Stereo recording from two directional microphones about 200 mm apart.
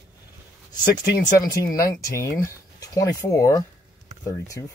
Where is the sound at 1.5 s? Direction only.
15° left (ahead or behind).